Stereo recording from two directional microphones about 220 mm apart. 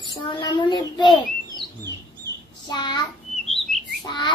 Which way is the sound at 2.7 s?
20° left (ahead or behind).